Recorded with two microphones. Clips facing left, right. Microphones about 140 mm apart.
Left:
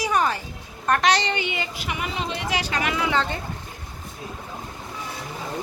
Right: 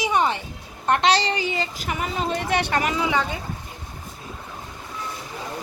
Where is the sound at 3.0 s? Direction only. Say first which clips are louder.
Even; 15° right (ahead or behind).